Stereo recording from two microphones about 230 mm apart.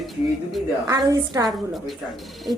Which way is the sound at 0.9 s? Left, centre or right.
Centre.